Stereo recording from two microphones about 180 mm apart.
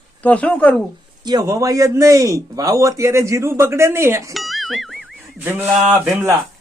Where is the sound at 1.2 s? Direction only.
20° right (ahead or behind).